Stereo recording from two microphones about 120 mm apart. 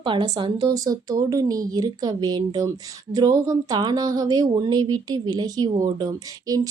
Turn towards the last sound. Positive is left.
turn(degrees=-30)  # may be behind; listen again after turning